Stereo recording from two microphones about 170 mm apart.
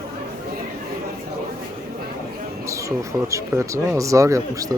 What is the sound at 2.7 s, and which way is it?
Speech, 20° right (ahead or behind).